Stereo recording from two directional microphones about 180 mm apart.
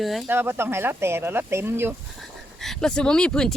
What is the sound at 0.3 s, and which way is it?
Speech, 10° right (ahead or behind).